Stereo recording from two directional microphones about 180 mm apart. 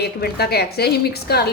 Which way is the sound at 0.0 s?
60° left (ahead or behind).